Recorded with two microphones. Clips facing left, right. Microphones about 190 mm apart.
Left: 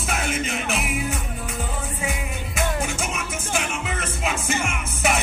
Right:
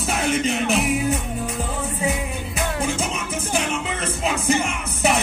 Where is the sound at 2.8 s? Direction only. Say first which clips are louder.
Right 3 dB; 30° right (ahead or behind).